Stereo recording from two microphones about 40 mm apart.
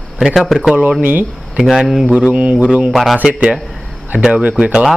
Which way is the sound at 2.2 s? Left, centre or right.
Right.